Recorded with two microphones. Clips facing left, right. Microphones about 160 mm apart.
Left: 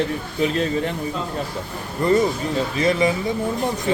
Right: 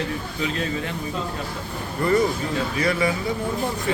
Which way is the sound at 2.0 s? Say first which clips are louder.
Left 2 dB; 20° left (ahead or behind).